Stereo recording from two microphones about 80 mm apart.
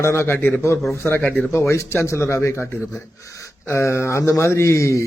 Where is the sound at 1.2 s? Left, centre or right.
Centre.